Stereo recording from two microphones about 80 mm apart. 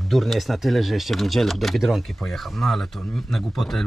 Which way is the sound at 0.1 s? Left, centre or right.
Centre.